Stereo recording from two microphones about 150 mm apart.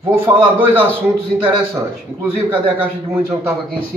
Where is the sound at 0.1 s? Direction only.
15° right (ahead or behind).